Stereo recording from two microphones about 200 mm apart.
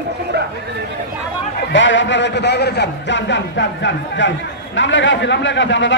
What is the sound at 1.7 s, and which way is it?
Speech, 65° left (ahead or behind).